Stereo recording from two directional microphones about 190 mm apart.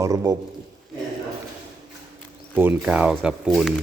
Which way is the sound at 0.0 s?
15° right (ahead or behind).